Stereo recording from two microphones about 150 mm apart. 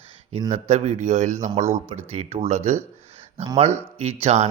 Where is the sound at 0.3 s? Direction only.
40° right (ahead or behind).